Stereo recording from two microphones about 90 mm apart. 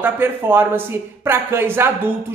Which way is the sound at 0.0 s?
25° right (ahead or behind).